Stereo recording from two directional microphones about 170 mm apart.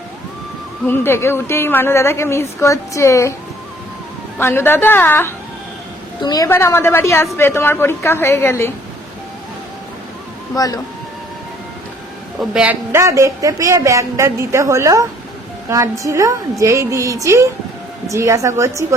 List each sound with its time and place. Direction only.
0.9 s a woman's voice: 15° left (ahead or behind)
4.4 s a woman's voice: 15° left (ahead or behind)
10.5 s speech: 20° left (ahead or behind)
12.4 s a man's voice: 5° right (ahead or behind)
12.9 s speech: 15° right (ahead or behind)